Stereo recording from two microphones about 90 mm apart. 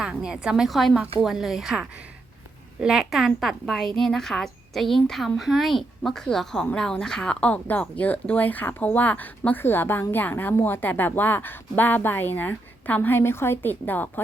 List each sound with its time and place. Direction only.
0.0 s a woman's voice: 10° right (ahead or behind); by 14.1 s 20° left (ahead or behind)